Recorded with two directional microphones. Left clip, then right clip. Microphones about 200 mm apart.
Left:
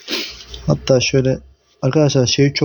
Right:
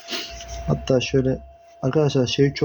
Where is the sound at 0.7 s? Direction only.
40° left (ahead or behind).